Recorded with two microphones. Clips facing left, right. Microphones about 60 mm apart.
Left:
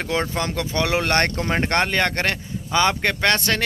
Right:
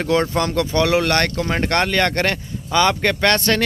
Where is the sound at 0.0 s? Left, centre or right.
Centre; by 1.5 s left.